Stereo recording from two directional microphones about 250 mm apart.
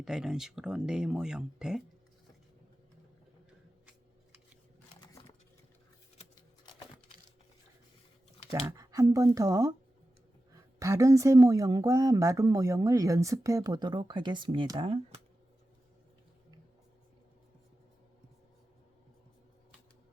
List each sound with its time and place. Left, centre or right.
0.0 s speech: centre
6.1 s tick-tock: centre
8.4 s speech: centre